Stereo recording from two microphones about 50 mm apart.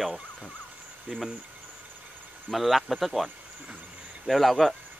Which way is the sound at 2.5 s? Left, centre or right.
Centre.